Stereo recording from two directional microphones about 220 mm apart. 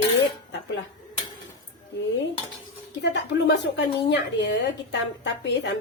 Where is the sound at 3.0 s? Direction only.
50° left (ahead or behind).